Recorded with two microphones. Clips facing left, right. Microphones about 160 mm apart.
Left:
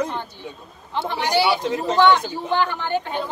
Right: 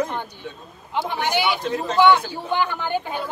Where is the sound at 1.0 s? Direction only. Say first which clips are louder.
Left 2 dB; 15° right (ahead or behind).